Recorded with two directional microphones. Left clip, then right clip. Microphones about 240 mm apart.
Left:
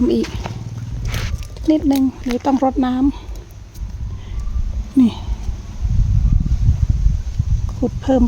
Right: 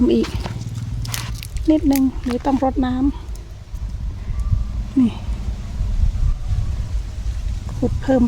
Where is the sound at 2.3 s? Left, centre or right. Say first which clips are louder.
Left 4 dB; centre.